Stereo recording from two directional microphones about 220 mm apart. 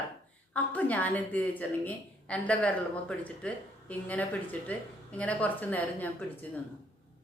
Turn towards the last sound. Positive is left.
turn(degrees=5)  # may be behind; listen again after turning